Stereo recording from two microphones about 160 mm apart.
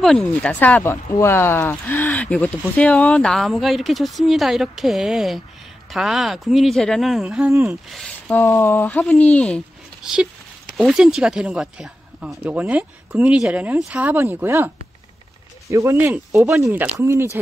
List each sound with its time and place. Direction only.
0.0 s speech: 5° left (ahead or behind)
10.0 s speech: 5° right (ahead or behind)
15.7 s speech: 15° right (ahead or behind)